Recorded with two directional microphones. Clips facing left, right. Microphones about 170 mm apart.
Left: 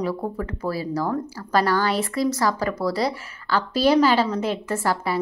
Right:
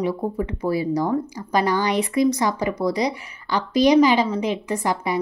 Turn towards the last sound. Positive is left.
turn(degrees=-15)  # may be behind; listen again after turning